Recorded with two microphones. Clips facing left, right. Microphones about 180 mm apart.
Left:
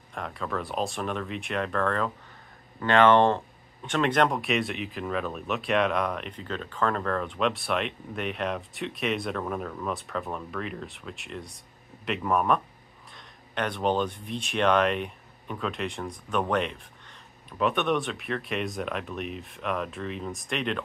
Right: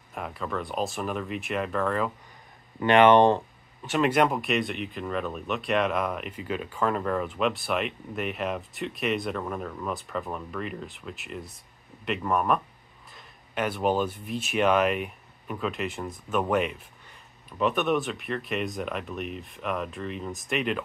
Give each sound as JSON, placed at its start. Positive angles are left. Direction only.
{"t": 0.1, "sound": "speech", "side_deg": -5}
{"t": 2.8, "sound": "speech", "side_deg": -20}
{"t": 3.8, "sound": "speech", "side_deg": -5}